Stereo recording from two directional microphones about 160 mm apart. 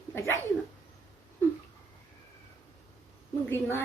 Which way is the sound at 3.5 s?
15° left (ahead or behind).